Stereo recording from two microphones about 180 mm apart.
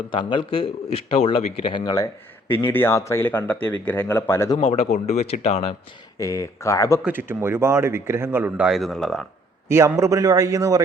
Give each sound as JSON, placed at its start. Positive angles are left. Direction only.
{"t": 0.1, "sound": "a man's voice", "side_deg": 30}
{"t": 2.7, "sound": "speech", "side_deg": 15}
{"t": 4.6, "sound": "speech", "side_deg": 35}
{"t": 6.1, "sound": "speech", "side_deg": 15}
{"t": 7.0, "sound": "a man's voice", "side_deg": -10}
{"t": 9.6, "sound": "a man's voice", "side_deg": -15}